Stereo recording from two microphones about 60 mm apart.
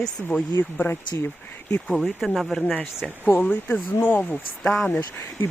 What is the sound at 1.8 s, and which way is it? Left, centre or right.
Speech, centre.